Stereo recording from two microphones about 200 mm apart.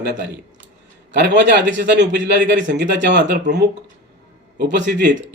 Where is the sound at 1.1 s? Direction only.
60° right (ahead or behind).